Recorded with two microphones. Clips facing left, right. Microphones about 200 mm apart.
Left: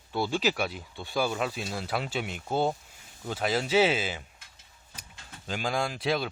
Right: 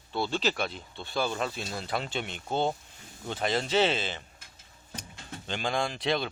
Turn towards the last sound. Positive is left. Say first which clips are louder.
# even
turn(degrees=5)  # may be behind; listen again after turning